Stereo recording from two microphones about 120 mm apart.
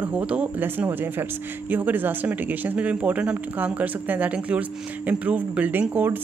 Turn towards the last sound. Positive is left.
turn(degrees=-15)  # may be behind; listen again after turning